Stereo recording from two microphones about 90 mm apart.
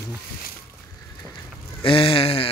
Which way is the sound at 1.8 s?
80° left.